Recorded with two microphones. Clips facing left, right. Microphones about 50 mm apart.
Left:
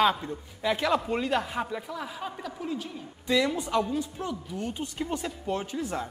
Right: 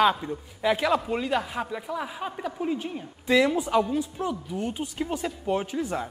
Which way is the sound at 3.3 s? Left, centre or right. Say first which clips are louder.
Right 4 dB; centre.